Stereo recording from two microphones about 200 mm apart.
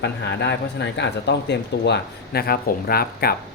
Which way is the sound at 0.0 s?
60° left (ahead or behind).